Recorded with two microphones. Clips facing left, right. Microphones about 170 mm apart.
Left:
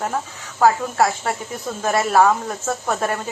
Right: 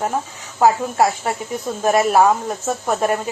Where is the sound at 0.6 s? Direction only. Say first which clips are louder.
Right 1 dB; 15° right (ahead or behind).